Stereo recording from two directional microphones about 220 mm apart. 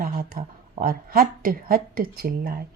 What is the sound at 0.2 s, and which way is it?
Speech, 40° right (ahead or behind).